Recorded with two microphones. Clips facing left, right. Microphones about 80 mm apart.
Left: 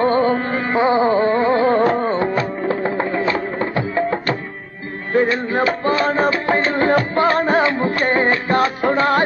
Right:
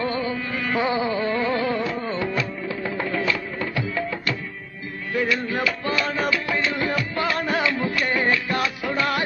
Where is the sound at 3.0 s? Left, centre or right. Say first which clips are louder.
Left 6 dB; left.